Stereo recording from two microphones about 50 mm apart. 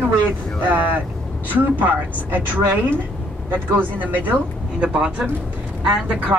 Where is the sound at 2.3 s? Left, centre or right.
Right.